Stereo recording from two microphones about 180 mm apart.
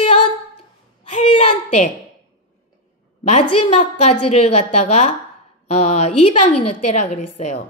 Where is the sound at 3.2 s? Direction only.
35° left (ahead or behind).